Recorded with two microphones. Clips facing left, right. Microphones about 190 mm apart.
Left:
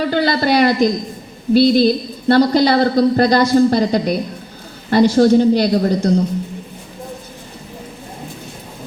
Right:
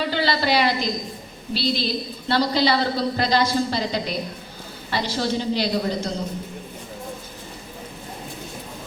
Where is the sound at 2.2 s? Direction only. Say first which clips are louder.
Left 9 dB; 50° left (ahead or behind).